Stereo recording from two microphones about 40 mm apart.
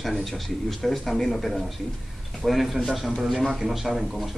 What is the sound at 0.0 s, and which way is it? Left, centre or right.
Speech, centre.